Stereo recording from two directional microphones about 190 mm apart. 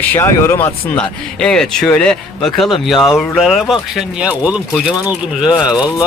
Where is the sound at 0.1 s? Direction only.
15° left (ahead or behind).